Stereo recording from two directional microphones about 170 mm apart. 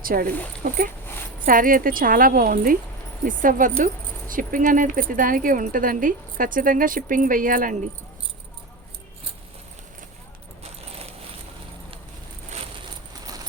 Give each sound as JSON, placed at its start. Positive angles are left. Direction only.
{"t": 0.0, "sound": "speech", "side_deg": -60}
{"t": 10.6, "sound": "keys jangling", "side_deg": -35}